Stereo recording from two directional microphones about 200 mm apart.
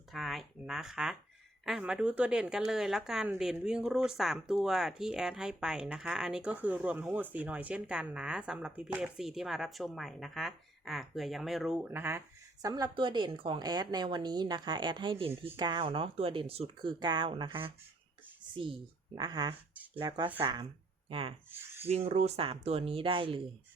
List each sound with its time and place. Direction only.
0.1 s a sound: centre (ahead or behind)
1.6 s a woman's voice: 5° right (ahead or behind); by 17.7 s 25° right (ahead or behind)
19.1 s a woman's voice: 20° right (ahead or behind)
21.5 s speech: 10° right (ahead or behind)
21.8 s a woman's voice: 30° right (ahead or behind)